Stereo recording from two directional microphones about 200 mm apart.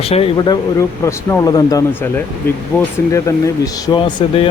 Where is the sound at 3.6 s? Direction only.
20° left (ahead or behind).